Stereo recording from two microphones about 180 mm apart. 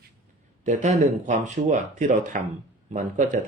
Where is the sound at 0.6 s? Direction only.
40° right (ahead or behind).